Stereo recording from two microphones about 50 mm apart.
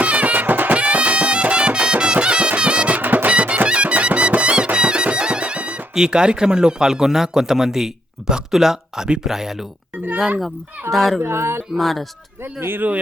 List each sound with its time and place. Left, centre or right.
0.0 s music: right
0.8 s music: right
3.0 s music: right
3.2 s music: right
5.9 s a man's voice: centre
10.9 s speech: centre
11.2 s a sound: right
11.8 s speech: centre
12.4 s speech: right